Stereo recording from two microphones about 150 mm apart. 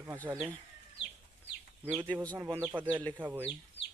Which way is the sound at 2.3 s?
20° right (ahead or behind).